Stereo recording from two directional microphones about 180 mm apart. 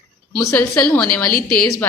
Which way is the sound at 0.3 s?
5° left (ahead or behind).